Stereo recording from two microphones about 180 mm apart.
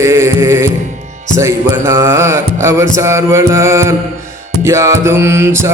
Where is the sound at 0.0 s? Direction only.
15° right (ahead or behind).